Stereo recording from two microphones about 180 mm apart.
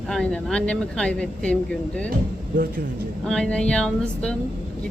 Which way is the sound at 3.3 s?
5° left (ahead or behind).